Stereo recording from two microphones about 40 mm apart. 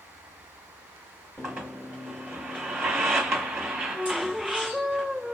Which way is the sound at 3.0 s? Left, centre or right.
Centre.